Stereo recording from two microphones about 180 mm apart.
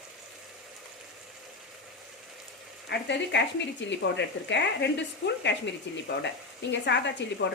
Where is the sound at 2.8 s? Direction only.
75° left (ahead or behind).